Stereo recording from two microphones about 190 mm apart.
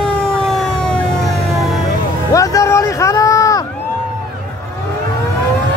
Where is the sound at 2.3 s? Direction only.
15° left (ahead or behind).